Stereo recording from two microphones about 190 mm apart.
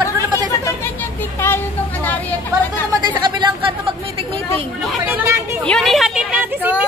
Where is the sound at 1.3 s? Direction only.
10° left (ahead or behind).